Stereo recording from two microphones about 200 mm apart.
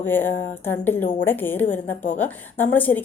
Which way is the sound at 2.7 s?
10° left (ahead or behind).